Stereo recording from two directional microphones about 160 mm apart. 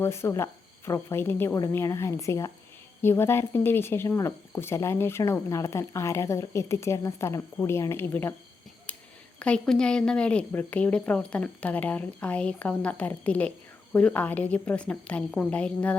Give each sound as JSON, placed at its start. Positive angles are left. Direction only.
{"t": 0.0, "sound": "speech", "side_deg": 15}
{"t": 8.9, "sound": "a sound", "side_deg": 5}
{"t": 9.4, "sound": "speech", "side_deg": 5}